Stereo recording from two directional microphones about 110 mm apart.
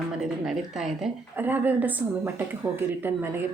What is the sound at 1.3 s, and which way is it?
A woman's voice, 15° right (ahead or behind).